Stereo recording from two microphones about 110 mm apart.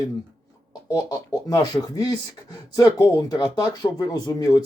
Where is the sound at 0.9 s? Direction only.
35° left (ahead or behind).